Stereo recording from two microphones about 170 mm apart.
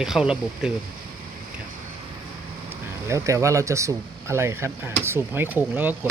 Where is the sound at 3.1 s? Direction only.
15° right (ahead or behind).